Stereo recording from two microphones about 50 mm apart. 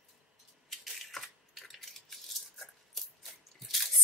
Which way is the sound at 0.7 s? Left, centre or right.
Centre.